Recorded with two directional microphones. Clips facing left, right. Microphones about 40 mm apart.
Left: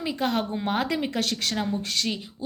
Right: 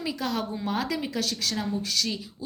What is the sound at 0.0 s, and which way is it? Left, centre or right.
Speech, left.